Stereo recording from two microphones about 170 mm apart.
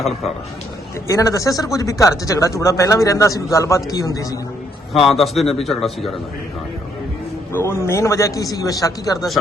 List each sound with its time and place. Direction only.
1.0 s speech: 20° left (ahead or behind)
5.0 s a man's voice: centre (ahead or behind)
7.5 s a man's voice: 15° left (ahead or behind)